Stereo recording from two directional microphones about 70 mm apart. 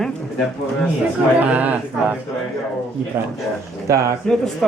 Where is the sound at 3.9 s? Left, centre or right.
Right.